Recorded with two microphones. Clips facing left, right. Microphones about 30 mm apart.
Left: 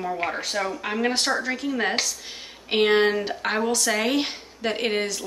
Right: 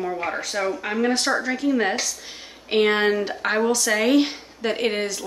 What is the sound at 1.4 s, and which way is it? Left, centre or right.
Speech, centre.